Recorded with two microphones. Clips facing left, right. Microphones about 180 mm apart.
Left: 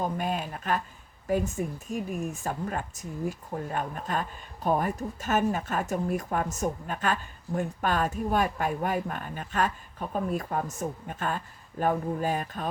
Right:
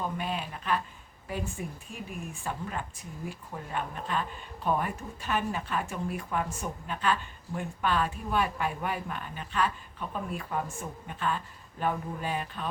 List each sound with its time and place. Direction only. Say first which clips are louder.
0.0 s speech: left 4 dB; 45° left (ahead or behind)